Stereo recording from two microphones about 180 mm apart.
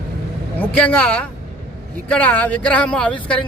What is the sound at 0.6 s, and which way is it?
A man's voice, 10° left (ahead or behind).